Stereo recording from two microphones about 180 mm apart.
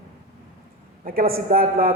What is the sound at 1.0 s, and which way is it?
Speech, 55° right (ahead or behind).